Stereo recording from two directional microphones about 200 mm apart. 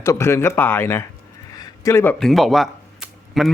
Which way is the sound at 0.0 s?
15° left (ahead or behind).